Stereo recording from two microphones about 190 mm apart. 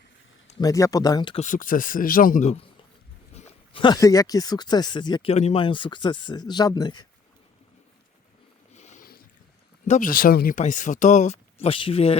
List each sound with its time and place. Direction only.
0.6 s speech: 20° left (ahead or behind)
1.4 s speech: 45° left (ahead or behind)
3.3 s speech: 30° left (ahead or behind)
8.7 s a sound: 40° left (ahead or behind)
9.8 s speech: 40° left (ahead or behind)